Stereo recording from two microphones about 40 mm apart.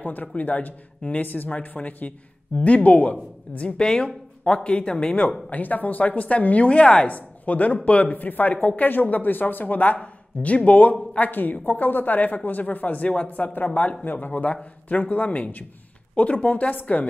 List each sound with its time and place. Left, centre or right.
0.0 s a man's voice: left
3.8 s speech: left
5.5 s a woman's voice: left